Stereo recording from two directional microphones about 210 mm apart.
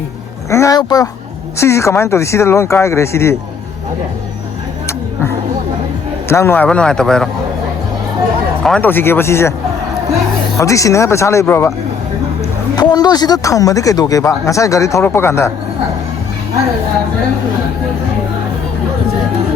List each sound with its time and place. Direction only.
0.5 s speech: 15° left (ahead or behind)
6.2 s a man's voice: 10° left (ahead or behind)
8.6 s speech: 5° left (ahead or behind)
10.6 s speech: 15° left (ahead or behind)
12.7 s speech: 20° left (ahead or behind)